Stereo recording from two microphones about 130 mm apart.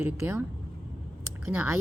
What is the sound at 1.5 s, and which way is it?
Speech, 15° right (ahead or behind).